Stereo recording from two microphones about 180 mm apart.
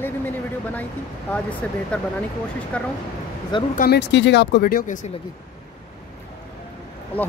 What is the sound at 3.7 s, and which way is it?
Speech, 55° left (ahead or behind).